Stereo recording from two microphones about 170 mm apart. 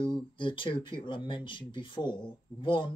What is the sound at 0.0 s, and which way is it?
Speech, 30° left (ahead or behind).